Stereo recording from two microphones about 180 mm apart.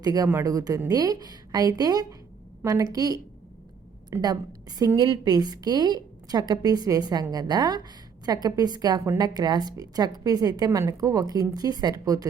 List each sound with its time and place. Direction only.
0.0 s a woman's voice: 20° right (ahead or behind)